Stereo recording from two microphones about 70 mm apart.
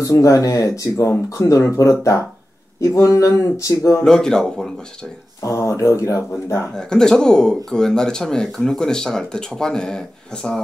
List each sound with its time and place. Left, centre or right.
0.0 s speech: left
4.0 s speech: centre
5.4 s speech: left
6.7 s speech: centre